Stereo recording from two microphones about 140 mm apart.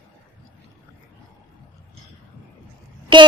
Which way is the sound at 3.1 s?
35° right (ahead or behind).